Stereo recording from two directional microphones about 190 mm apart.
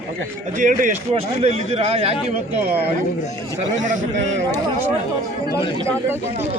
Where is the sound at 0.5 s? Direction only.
40° right (ahead or behind).